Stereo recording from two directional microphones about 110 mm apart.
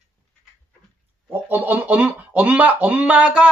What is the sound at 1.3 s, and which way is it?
Speech, 20° right (ahead or behind).